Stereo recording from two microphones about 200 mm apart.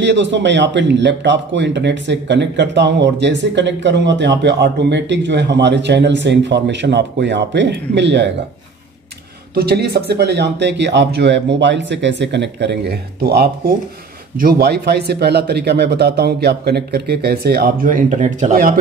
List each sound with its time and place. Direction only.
0.0 s a man's voice: 60° right (ahead or behind)
9.6 s a man's voice: 50° right (ahead or behind)